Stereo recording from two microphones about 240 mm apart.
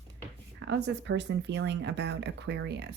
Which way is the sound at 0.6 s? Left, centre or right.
Right.